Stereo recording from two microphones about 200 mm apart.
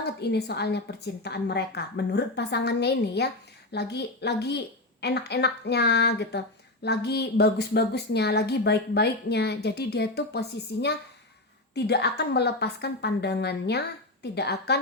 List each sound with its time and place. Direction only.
0.0 s a woman's voice: 55° left (ahead or behind)